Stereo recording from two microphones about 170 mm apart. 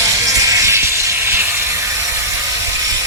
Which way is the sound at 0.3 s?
20° right (ahead or behind).